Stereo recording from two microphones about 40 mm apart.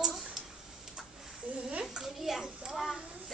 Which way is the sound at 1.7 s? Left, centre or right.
Centre.